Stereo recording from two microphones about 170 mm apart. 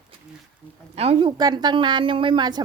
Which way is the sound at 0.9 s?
35° right (ahead or behind).